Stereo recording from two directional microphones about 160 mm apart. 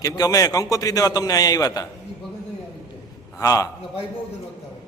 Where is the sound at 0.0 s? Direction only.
20° left (ahead or behind).